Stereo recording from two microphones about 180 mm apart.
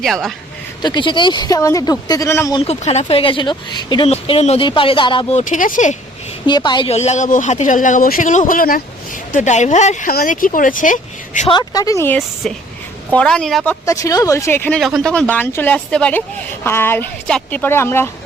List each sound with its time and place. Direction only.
0.0 s speech: centre (ahead or behind)
0.8 s speech: 25° left (ahead or behind)
2.6 s speech: 35° left (ahead or behind)
4.1 s speech: 35° left (ahead or behind)
6.4 s speech: 25° left (ahead or behind)
6.9 s speech: 40° left (ahead or behind)
9.3 s speech: 40° left (ahead or behind)
10.1 s speech: 55° left (ahead or behind)
11.4 s speech: 25° left (ahead or behind); by 13.7 s centre (ahead or behind)
13.8 s speech: 20° left (ahead or behind)
14.8 s speech: centre (ahead or behind)